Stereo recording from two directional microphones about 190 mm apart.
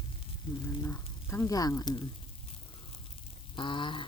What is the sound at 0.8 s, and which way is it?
Speech, 10° left (ahead or behind).